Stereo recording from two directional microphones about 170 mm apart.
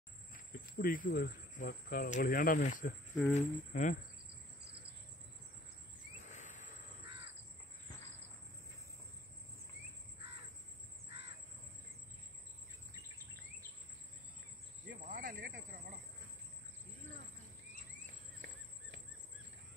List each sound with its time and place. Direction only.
0.3 s speech: 60° left (ahead or behind)
6.3 s a sound: 45° left (ahead or behind)
12.9 s cricket: 15° right (ahead or behind)
14.9 s cricket: 55° right (ahead or behind)